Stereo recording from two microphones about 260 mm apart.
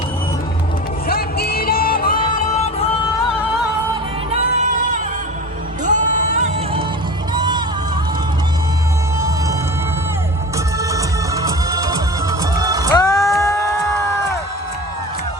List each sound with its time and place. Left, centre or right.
1.0 s music: left
4.3 s music: right
7.3 s music: centre
9.1 s whale vocalization: centre
10.8 s music: centre
12.9 s music: centre